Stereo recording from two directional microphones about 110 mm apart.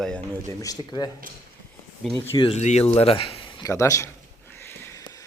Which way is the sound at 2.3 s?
50° left (ahead or behind).